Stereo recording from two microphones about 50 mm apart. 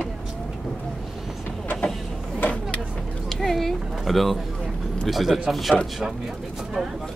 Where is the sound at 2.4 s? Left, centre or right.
Left.